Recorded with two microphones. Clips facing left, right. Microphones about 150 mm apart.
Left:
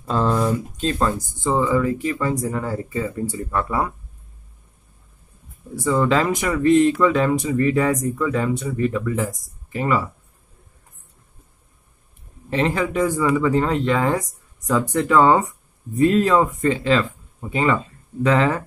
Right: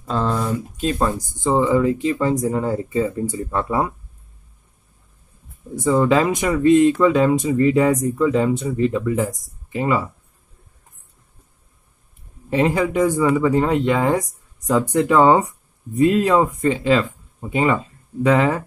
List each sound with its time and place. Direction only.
0.0 s a sound: 5° left (ahead or behind)
0.7 s speech: 15° right (ahead or behind)
5.8 s speech: 20° right (ahead or behind)
12.4 s speech: 15° right (ahead or behind)